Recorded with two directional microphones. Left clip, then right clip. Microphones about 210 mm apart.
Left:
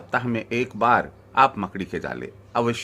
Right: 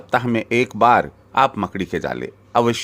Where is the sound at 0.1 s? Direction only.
30° right (ahead or behind).